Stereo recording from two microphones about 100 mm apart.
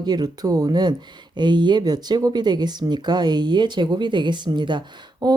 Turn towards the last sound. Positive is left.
turn(degrees=-45)  # may be behind; listen again after turning